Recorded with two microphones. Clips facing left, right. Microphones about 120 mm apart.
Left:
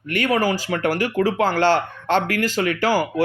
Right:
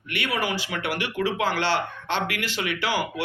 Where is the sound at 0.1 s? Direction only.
40° left (ahead or behind).